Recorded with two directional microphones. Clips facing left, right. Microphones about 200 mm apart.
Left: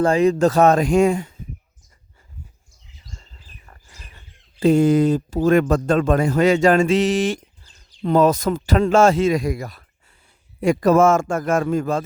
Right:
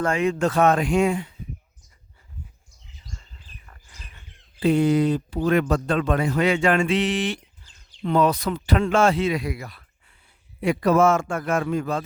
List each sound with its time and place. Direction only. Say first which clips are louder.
0.0 s speech: left 6 dB; 35° left (ahead or behind)
3.7 s chirp: left 2 dB; 40° left (ahead or behind)
4.6 s speech: left 4 dB; 45° left (ahead or behind)